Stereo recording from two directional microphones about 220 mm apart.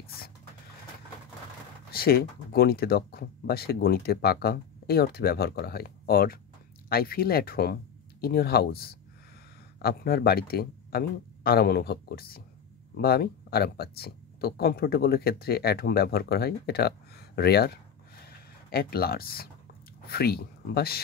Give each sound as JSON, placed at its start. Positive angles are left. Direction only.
{"t": 1.9, "sound": "speech", "side_deg": 45}
{"t": 18.2, "sound": "a sound", "side_deg": 45}
{"t": 20.1, "sound": "speech", "side_deg": 45}